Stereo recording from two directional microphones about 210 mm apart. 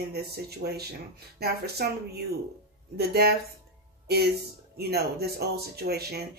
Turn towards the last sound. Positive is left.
turn(degrees=-50)  # may be behind; listen again after turning